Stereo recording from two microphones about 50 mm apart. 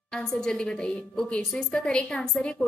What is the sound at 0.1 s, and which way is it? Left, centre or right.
A woman's voice, centre.